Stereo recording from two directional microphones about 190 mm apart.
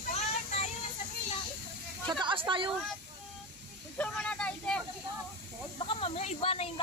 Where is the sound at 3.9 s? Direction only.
5° left (ahead or behind).